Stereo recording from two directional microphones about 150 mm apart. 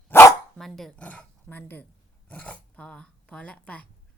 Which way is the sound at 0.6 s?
Centre (ahead or behind).